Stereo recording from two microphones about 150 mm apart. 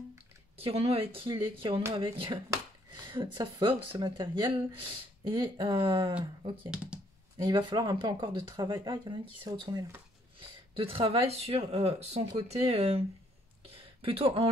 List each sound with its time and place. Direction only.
0.6 s speech: 40° right (ahead or behind)
6.7 s speech: 5° right (ahead or behind)
7.4 s speech: 30° right (ahead or behind)
13.7 s a sound: 40° right (ahead or behind)